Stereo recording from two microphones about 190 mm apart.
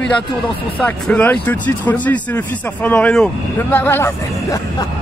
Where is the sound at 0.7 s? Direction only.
10° left (ahead or behind).